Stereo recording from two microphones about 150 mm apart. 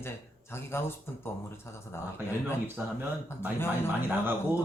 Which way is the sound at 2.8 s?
10° right (ahead or behind).